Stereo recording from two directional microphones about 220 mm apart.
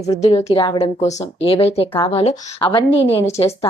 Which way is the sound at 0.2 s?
30° left (ahead or behind).